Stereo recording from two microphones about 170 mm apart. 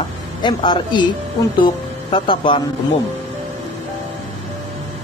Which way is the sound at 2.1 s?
30° left (ahead or behind).